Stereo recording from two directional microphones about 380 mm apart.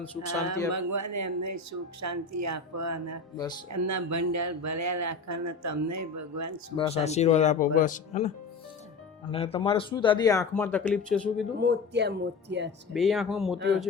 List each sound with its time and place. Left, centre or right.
0.7 s speech: right
6.7 s a man's voice: centre
9.3 s a man's voice: centre
11.6 s speech: right
12.9 s speech: centre